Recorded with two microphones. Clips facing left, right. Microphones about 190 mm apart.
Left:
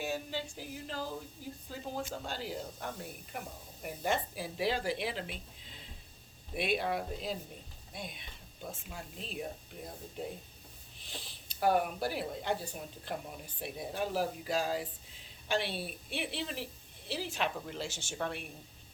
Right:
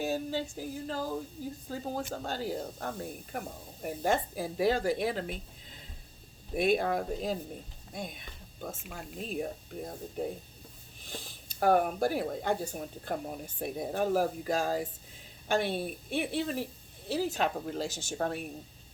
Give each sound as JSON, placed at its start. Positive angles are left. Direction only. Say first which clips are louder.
{"t": 0.0, "sound": "speech", "louder": "right 5 dB", "side_deg": -40}
{"t": 6.6, "sound": "speech", "louder": "right 5 dB", "side_deg": -45}
{"t": 11.0, "sound": "a woman's voice", "louder": "right 4 dB", "side_deg": -45}